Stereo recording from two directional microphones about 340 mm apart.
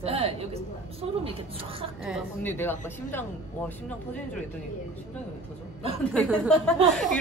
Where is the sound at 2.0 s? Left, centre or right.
Centre.